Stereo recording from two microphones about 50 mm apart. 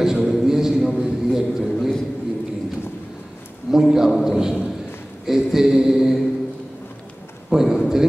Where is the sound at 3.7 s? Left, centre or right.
Centre.